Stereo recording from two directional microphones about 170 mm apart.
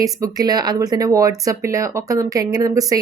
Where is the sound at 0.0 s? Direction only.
20° right (ahead or behind).